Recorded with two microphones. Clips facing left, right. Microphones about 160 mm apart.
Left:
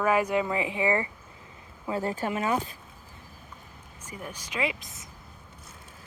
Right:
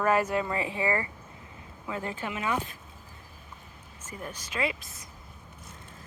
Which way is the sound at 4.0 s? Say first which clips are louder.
Even; 10° left (ahead or behind).